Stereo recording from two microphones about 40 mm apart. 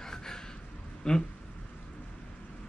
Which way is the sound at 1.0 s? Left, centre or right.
Centre.